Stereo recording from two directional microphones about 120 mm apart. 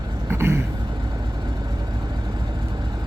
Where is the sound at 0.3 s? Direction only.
20° right (ahead or behind).